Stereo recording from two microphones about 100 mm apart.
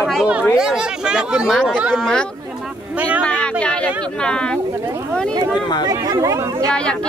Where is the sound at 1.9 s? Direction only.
5° left (ahead or behind).